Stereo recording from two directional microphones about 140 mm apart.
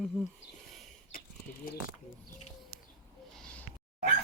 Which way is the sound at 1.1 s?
90° left.